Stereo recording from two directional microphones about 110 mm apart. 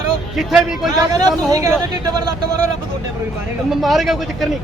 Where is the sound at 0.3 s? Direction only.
Centre (ahead or behind).